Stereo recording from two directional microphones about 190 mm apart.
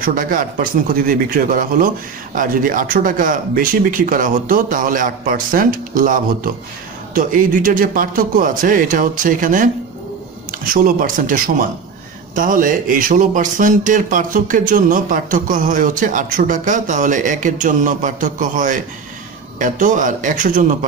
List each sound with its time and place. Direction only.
0.0 s speech: 45° right (ahead or behind)